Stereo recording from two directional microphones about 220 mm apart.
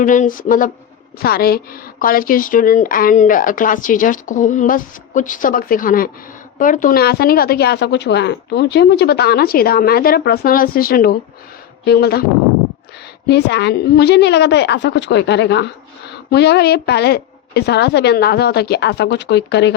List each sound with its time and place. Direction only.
0.0 s a woman's voice: 35° left (ahead or behind)
13.2 s a woman's voice: 50° left (ahead or behind)